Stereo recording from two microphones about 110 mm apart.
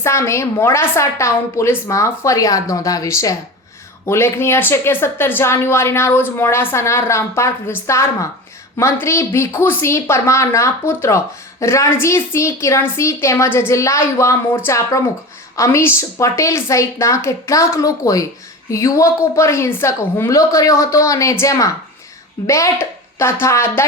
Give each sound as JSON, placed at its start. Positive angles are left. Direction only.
{"t": 0.0, "sound": "a woman's voice", "side_deg": 25}